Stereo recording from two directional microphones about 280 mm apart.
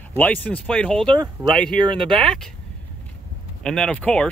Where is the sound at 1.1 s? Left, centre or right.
Centre.